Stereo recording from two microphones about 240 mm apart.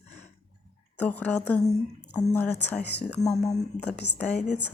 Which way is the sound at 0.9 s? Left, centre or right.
Centre.